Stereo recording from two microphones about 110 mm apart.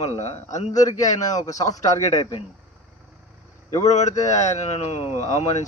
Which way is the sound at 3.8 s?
90° left.